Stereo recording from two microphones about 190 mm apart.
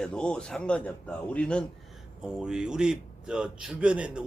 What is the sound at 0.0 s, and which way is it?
A man's voice, 5° left (ahead or behind).